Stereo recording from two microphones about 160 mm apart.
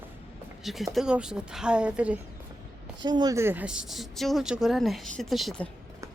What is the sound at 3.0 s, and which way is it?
Speech, 25° right (ahead or behind).